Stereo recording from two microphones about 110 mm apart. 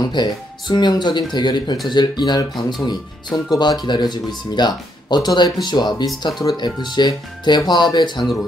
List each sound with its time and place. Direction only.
0.0 s speech: 40° left (ahead or behind)